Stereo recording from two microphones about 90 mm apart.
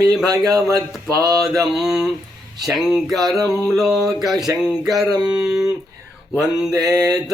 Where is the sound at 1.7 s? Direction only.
5° right (ahead or behind).